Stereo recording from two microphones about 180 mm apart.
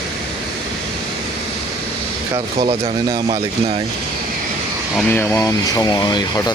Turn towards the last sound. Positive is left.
turn(degrees=25)  # may be behind; listen again after turning